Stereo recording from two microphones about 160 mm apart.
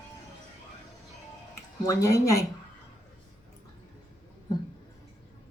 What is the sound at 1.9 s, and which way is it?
Speech, 20° left (ahead or behind).